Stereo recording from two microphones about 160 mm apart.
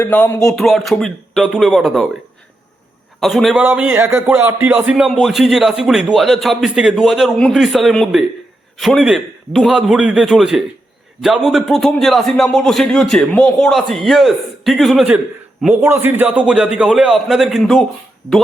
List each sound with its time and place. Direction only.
0.0 s a sound: 15° left (ahead or behind)
0.4 s speech: centre (ahead or behind)
3.2 s a man's voice: centre (ahead or behind)